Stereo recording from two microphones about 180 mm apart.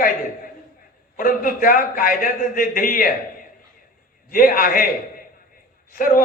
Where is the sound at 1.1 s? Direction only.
50° left (ahead or behind).